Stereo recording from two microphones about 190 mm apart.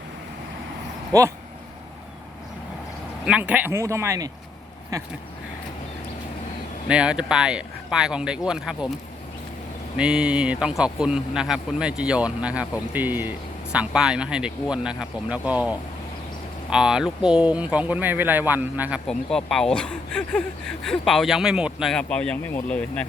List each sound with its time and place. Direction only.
1.1 s speech: 20° right (ahead or behind)
3.2 s speech: 5° right (ahead or behind)
6.8 s speech: 5° right (ahead or behind)
10.0 s speech: 5° right (ahead or behind)